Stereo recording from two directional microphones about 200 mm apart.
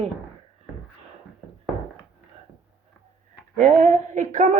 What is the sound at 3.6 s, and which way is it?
Speech, 40° right (ahead or behind).